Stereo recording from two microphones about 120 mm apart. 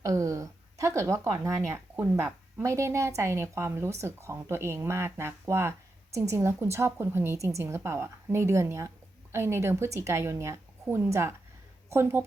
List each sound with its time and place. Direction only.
0.0 s a woman's voice: 25° right (ahead or behind)